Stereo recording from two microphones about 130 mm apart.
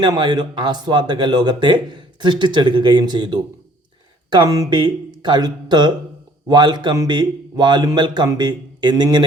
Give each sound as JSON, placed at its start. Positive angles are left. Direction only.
{"t": 0.0, "sound": "speech", "side_deg": -35}